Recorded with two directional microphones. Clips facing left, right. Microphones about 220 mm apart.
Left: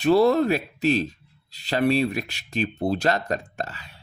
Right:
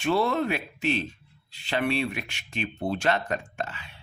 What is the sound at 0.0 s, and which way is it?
Speech, 40° left (ahead or behind).